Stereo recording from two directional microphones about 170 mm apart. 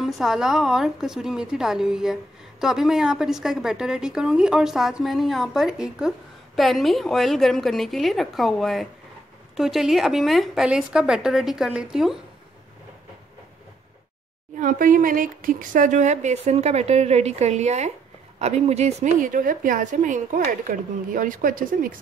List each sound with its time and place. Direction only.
0.0 s a woman's voice: 5° right (ahead or behind)
14.6 s a woman's voice: 50° right (ahead or behind)